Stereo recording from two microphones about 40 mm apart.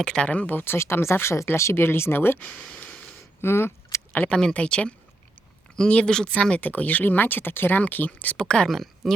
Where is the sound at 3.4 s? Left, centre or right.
Left.